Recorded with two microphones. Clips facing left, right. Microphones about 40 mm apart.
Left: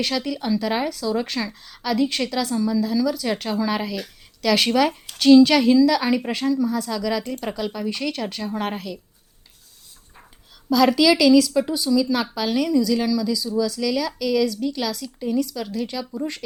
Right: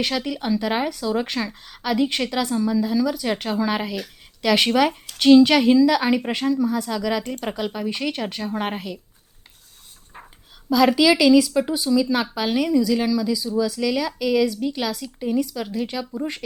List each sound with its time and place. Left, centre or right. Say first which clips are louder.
0.0 s a woman's voice: even; centre
10.7 s a woman's voice: even; centre